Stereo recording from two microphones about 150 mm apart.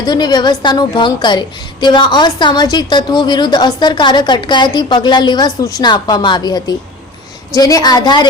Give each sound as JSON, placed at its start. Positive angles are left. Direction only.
{"t": 0.0, "sound": "a woman's voice", "side_deg": 25}